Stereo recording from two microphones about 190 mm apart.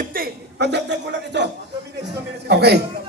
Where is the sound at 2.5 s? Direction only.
60° right (ahead or behind).